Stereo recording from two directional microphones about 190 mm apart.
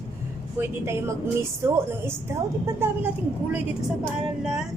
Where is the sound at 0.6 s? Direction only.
15° right (ahead or behind).